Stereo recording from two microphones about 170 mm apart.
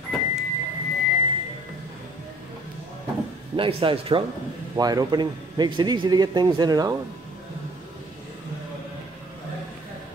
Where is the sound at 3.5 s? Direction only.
30° right (ahead or behind).